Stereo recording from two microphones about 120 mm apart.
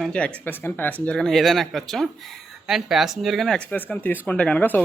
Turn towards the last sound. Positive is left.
turn(degrees=15)  # may be behind; listen again after turning